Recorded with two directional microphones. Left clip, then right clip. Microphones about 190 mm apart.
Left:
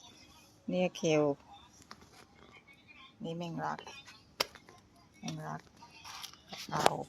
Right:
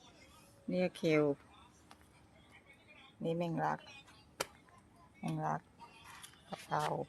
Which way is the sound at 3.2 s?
10° right (ahead or behind).